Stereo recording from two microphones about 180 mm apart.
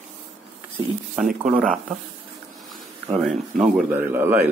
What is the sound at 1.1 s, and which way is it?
Speech, 5° right (ahead or behind).